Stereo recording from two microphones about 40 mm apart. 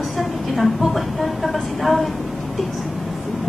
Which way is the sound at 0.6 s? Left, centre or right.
Centre.